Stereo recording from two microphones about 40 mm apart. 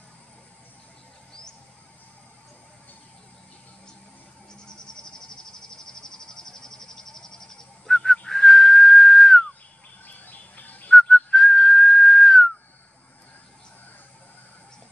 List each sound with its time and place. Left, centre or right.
4.5 s insect: centre
10.0 s bird: left
10.9 s whistling: centre